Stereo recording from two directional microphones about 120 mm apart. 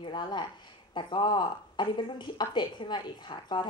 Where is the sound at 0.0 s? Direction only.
40° left (ahead or behind).